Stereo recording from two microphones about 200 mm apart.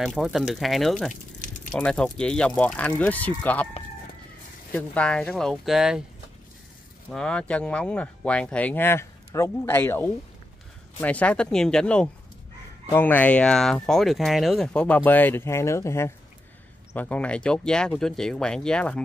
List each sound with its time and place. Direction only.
0.0 s speech: centre (ahead or behind)
4.7 s speech: 5° left (ahead or behind)
7.1 s speech: 5° left (ahead or behind)